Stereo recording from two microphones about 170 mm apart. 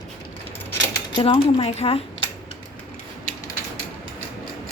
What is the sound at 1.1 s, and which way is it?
Speech, 30° left (ahead or behind).